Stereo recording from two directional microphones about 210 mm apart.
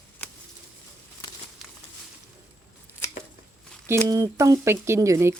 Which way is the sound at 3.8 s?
15° right (ahead or behind).